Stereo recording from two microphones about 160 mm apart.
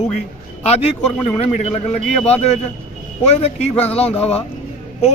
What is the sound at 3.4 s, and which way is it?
A man's voice, 40° left (ahead or behind).